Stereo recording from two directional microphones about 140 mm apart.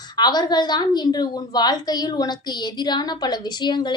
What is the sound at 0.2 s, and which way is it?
A woman's voice, 30° left (ahead or behind).